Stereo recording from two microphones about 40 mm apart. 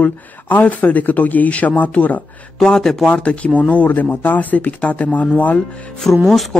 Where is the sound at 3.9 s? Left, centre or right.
Left.